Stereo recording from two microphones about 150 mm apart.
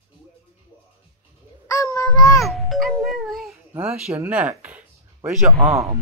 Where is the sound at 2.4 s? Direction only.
Centre (ahead or behind).